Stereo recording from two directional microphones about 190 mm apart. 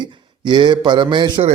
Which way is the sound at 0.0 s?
25° right (ahead or behind).